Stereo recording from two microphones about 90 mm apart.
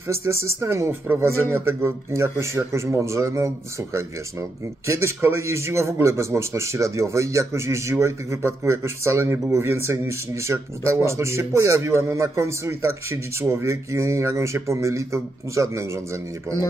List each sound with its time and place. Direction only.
0.1 s speech: 30° right (ahead or behind)